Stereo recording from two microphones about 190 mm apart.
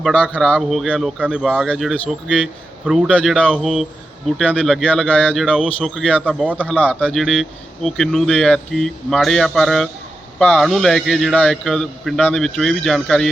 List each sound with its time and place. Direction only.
0.0 s speech: 5° left (ahead or behind)
6.2 s a man's voice: 5° right (ahead or behind)
6.7 s speech: 5° left (ahead or behind)